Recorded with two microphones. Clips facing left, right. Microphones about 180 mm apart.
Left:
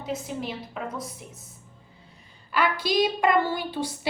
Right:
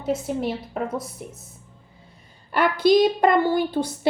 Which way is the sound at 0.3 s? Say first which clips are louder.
Right 7 dB; 50° right (ahead or behind).